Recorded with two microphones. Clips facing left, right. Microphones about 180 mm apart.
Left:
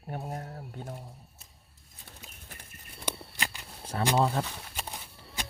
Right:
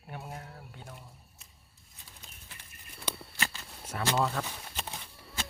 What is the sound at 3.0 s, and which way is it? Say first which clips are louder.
Walk: left 1 dB; 15° left (ahead or behind).